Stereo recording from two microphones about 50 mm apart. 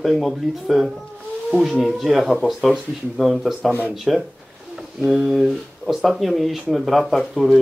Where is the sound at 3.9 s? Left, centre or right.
Centre.